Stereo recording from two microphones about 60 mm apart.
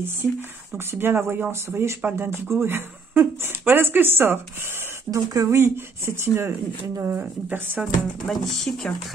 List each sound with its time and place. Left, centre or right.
0.9 s speech: right
5.1 s speech: right
7.5 s speech: right
8.3 s speech: centre